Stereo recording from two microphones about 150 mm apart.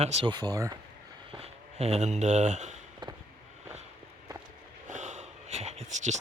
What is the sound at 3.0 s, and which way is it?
Vehicle, 30° right (ahead or behind).